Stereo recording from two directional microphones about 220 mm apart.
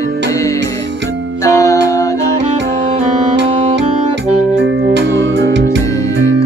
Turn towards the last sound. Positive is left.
turn(degrees=-55)  # may be behind; listen again after turning